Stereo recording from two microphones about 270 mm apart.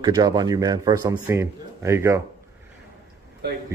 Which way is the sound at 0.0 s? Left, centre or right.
Centre.